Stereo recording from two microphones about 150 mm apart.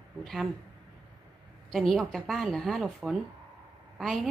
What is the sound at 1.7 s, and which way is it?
A woman's voice, 5° left (ahead or behind).